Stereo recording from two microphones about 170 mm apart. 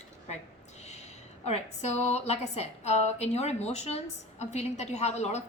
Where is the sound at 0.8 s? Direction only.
40° left (ahead or behind).